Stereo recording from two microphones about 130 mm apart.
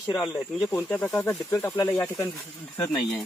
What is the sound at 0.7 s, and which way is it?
Speech, 15° left (ahead or behind).